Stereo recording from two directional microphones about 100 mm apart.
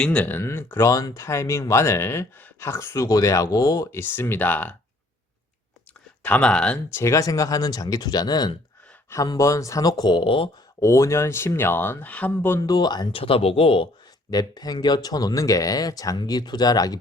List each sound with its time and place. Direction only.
0.0 s speech: 10° left (ahead or behind)
0.4 s speech: 25° left (ahead or behind)
3.9 s speech: 25° left (ahead or behind)
6.2 s speech: 15° left (ahead or behind)
6.9 s speech: 30° left (ahead or behind)
9.0 s speech: 35° left (ahead or behind); by 10.5 s 60° left (ahead or behind)
10.8 s speech: 30° left (ahead or behind)
12.5 s speech: 40° left (ahead or behind)
13.1 s speech: 65° left (ahead or behind)
14.3 s speech: 40° left (ahead or behind)